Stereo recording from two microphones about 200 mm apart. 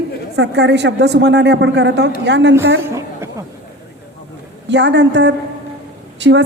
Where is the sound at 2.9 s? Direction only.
15° right (ahead or behind).